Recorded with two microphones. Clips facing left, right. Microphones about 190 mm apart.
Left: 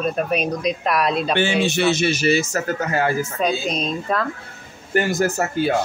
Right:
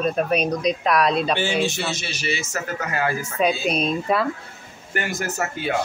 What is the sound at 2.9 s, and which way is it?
Speech, 30° left (ahead or behind).